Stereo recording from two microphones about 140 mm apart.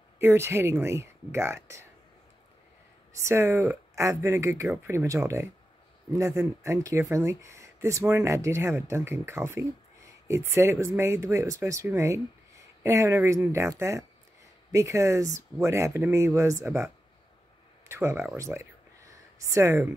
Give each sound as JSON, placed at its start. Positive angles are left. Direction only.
{"t": 0.2, "sound": "speech", "side_deg": -15}
{"t": 3.1, "sound": "speech", "side_deg": -20}